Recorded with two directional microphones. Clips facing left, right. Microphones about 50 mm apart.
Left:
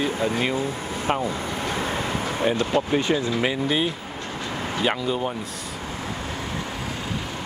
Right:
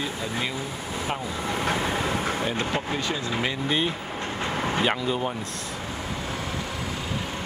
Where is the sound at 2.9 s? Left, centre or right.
Left.